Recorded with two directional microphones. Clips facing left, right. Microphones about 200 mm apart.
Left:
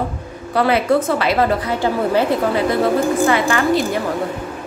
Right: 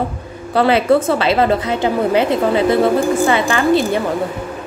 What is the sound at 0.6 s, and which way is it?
A woman's voice, 30° right (ahead or behind).